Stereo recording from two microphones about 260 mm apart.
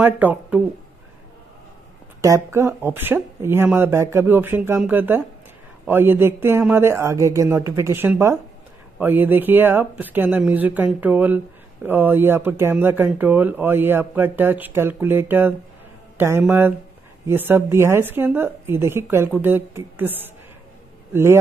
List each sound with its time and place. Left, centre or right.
0.0 s speech: centre
2.2 s a man's voice: centre